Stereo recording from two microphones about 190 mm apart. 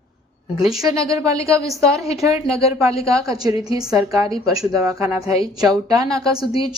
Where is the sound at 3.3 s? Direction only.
20° right (ahead or behind).